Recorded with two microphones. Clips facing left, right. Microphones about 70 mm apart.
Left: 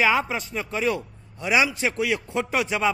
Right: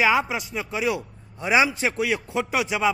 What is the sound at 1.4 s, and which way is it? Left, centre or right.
A man's voice, right.